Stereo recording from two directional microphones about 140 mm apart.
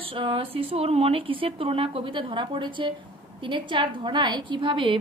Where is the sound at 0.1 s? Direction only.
40° right (ahead or behind).